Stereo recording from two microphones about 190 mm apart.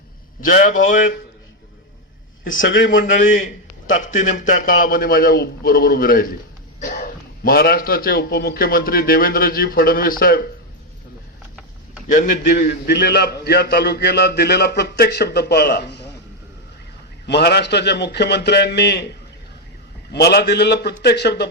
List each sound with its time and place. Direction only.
0.4 s a man's voice: 45° left (ahead or behind)
2.9 s a man's voice: 45° left (ahead or behind)
12.4 s a man's voice: 55° left (ahead or behind)
17.2 s a man's voice: 60° left (ahead or behind)
20.1 s a man's voice: 60° left (ahead or behind)